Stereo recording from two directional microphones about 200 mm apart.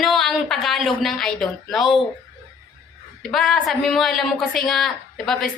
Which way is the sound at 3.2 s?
Centre (ahead or behind).